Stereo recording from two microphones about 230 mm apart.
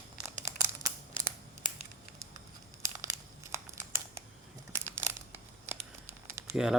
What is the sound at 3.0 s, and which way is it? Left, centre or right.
Crumpling, centre.